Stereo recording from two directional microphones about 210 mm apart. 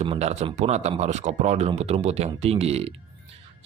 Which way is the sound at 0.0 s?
30° right (ahead or behind).